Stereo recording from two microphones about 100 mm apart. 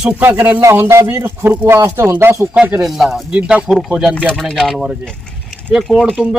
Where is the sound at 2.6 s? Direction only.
15° right (ahead or behind).